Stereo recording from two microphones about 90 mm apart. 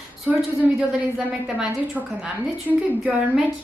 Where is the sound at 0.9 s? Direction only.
5° right (ahead or behind).